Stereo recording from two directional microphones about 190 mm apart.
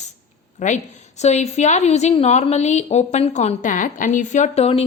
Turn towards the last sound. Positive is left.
turn(degrees=30)  # may be behind; listen again after turning